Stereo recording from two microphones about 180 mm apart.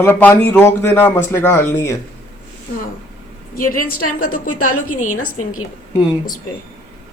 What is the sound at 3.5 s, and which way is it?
A woman's voice, 50° left (ahead or behind).